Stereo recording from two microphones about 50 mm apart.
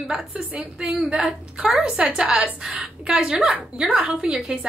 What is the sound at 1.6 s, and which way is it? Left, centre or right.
A woman's voice, right.